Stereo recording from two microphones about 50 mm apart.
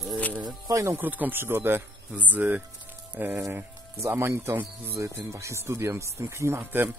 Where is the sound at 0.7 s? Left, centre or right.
Right.